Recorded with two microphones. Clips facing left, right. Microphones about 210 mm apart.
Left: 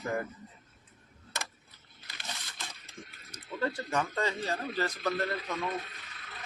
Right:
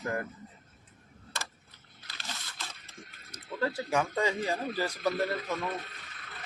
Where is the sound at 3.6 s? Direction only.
5° right (ahead or behind).